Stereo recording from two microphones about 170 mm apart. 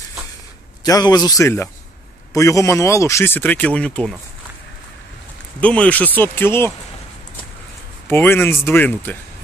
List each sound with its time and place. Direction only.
0.8 s speech: 20° left (ahead or behind); by 4.2 s 5° left (ahead or behind)
5.6 s speech: 5° left (ahead or behind)
8.1 s speech: 15° left (ahead or behind)